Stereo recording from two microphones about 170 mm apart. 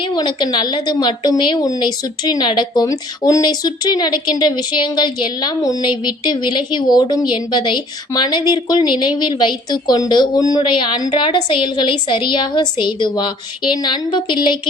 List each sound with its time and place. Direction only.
0.1 s a woman's voice: 25° left (ahead or behind)